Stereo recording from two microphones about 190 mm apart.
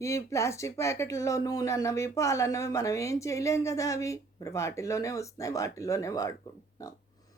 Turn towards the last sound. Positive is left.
turn(degrees=15)  # may be behind; listen again after turning